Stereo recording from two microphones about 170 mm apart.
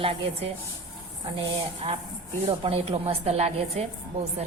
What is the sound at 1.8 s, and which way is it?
A woman's voice, 40° right (ahead or behind).